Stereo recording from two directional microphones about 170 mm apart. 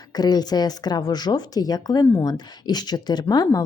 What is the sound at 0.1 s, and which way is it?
Speech, 25° left (ahead or behind).